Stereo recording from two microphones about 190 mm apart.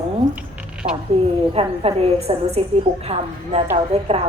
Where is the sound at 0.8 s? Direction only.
30° right (ahead or behind).